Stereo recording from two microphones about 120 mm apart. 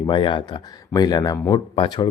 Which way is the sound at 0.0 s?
40° left (ahead or behind).